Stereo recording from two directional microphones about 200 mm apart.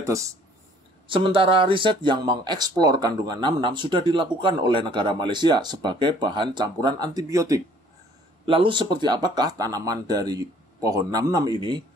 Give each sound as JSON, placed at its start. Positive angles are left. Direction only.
{"t": 0.0, "sound": "speech", "side_deg": -15}
{"t": 1.0, "sound": "speech", "side_deg": -25}